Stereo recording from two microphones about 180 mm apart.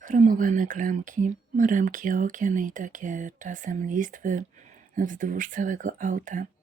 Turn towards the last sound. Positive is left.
turn(degrees=-50)  # may be behind; listen again after turning